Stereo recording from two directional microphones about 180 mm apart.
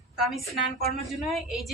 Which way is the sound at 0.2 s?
Centre (ahead or behind).